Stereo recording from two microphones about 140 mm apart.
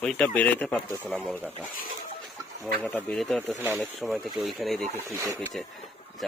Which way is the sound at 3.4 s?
20° right (ahead or behind).